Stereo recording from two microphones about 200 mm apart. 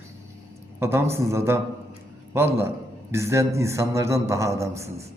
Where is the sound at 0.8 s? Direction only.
15° right (ahead or behind).